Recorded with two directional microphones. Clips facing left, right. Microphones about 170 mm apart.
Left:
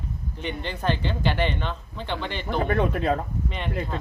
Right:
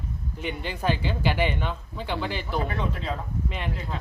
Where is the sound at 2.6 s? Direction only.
55° left (ahead or behind).